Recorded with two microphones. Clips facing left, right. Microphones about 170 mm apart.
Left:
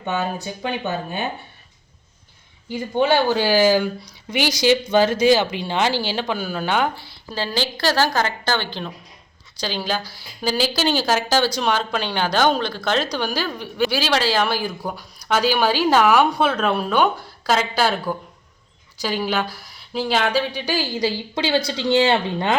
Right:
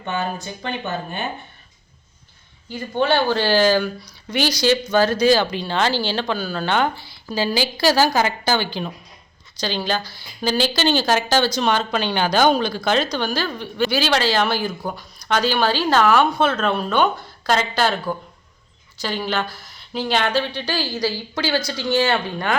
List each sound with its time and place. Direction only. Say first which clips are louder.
0.4 s speech: left 2 dB; 10° left (ahead or behind)
2.6 s speech: left 1 dB; 15° left (ahead or behind); by 8.9 s 5° right (ahead or behind)
9.6 s a woman's voice: right 1 dB; 5° left (ahead or behind)
13.1 s a woman's voice: right 1 dB; 10° left (ahead or behind)